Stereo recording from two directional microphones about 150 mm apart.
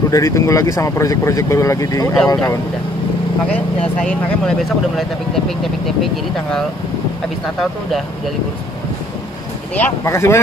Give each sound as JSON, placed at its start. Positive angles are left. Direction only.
{"t": 0.1, "sound": "speech", "side_deg": 20}
{"t": 3.5, "sound": "speech", "side_deg": 5}
{"t": 9.8, "sound": "speech", "side_deg": 20}